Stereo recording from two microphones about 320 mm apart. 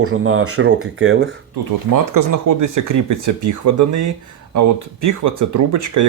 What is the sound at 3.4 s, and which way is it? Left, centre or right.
Speech, right.